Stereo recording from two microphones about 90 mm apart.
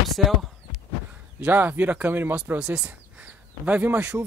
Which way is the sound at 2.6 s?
10° right (ahead or behind).